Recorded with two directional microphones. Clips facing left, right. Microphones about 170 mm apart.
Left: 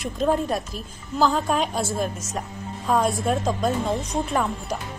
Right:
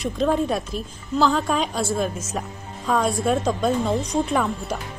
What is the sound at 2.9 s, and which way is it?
Speech, 5° left (ahead or behind).